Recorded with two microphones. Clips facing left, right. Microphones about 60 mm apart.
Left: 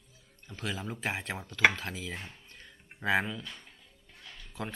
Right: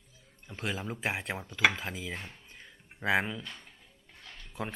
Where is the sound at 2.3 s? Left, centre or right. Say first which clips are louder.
Right 1 dB; centre.